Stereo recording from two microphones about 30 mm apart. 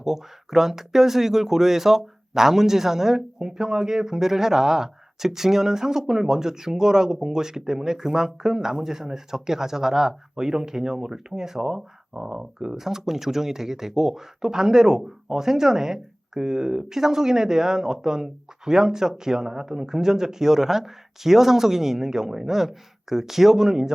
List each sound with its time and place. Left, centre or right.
0.0 s speech: centre
12.7 s speech: centre